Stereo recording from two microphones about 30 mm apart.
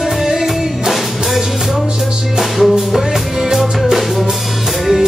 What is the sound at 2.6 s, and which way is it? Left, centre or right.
Music, centre.